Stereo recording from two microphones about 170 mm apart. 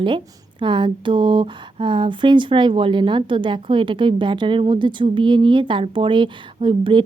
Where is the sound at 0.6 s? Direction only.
30° right (ahead or behind).